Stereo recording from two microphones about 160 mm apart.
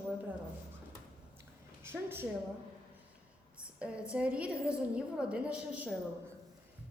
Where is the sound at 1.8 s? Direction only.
15° right (ahead or behind).